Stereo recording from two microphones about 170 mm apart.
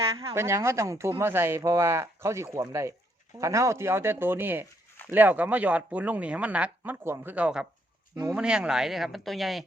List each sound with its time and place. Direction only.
0.3 s speech: 15° right (ahead or behind)